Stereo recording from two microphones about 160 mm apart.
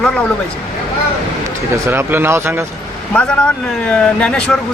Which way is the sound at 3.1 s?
5° left (ahead or behind).